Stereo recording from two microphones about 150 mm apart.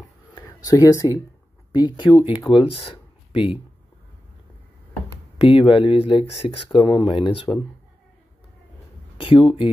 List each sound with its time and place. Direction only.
0.5 s speech: 25° left (ahead or behind)
5.4 s speech: 35° left (ahead or behind)
9.2 s speech: 35° left (ahead or behind)